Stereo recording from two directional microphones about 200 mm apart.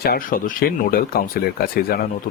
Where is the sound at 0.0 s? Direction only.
45° left (ahead or behind).